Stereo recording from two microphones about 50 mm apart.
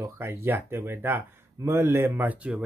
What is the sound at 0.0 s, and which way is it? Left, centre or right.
Speech, right.